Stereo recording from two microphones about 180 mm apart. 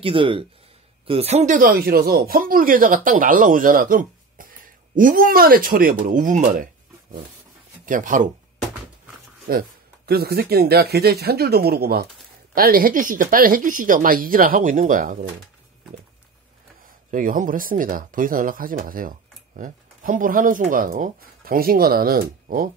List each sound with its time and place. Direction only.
0.0 s speech: 30° right (ahead or behind); by 8.3 s 45° right (ahead or behind)
9.5 s speech: 55° right (ahead or behind)
17.1 s speech: 50° right (ahead or behind)